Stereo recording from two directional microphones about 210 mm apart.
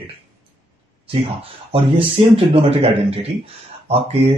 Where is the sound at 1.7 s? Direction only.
25° right (ahead or behind).